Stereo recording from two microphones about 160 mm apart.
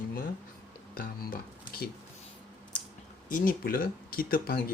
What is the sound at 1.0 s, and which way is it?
Speech, 70° left (ahead or behind).